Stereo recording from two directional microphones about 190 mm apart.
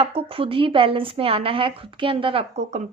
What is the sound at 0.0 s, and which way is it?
A woman's voice, 30° right (ahead or behind).